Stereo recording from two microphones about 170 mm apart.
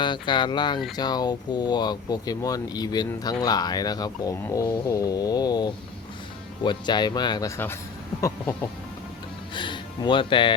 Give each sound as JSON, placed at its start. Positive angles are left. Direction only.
{"t": 0.0, "sound": "speech", "side_deg": 25}
{"t": 9.6, "sound": "speech", "side_deg": 25}